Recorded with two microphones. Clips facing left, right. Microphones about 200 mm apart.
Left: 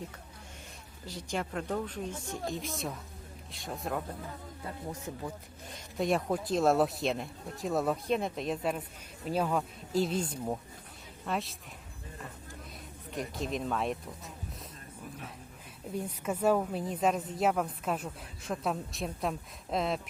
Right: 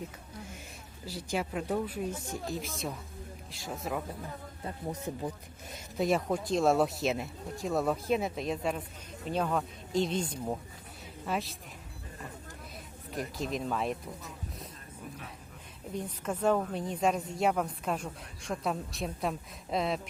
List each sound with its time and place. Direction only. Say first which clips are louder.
1.0 s a woman's voice: right 2 dB; 5° right (ahead or behind)
6.0 s a woman's voice: right 1 dB; centre (ahead or behind)
13.1 s a woman's voice: even; centre (ahead or behind)
16.0 s a woman's voice: left 1 dB; 10° left (ahead or behind)